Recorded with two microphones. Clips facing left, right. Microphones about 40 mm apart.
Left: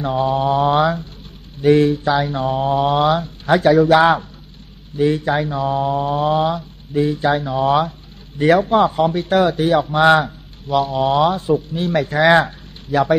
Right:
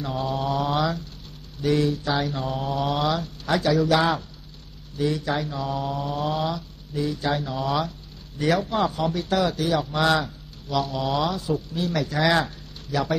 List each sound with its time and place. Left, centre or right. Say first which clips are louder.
0.0 s speech: left 9 dB; left